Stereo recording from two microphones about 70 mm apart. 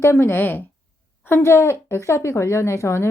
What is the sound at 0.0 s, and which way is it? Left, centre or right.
A woman's voice, left.